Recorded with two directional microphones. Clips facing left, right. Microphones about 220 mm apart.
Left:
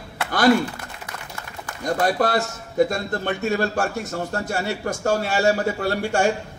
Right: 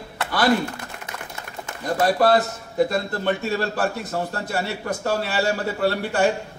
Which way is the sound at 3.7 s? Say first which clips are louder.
Even; 45° left (ahead or behind).